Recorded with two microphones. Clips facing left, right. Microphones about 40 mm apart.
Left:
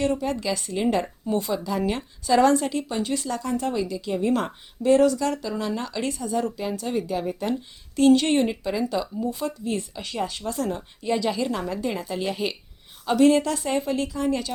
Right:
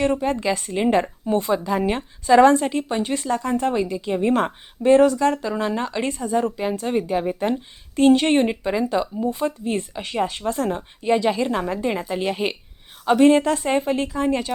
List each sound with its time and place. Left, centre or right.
0.0 s a woman's voice: right